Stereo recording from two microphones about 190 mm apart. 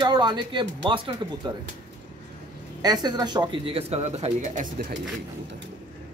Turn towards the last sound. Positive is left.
turn(degrees=-45)  # may be behind; listen again after turning